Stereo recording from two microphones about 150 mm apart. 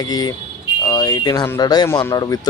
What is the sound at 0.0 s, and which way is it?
Speech, 25° left (ahead or behind).